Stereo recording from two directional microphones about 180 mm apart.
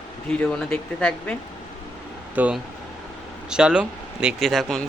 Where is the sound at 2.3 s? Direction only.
10° right (ahead or behind).